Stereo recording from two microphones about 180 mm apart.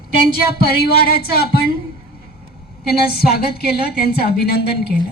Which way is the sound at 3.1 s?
60° left (ahead or behind).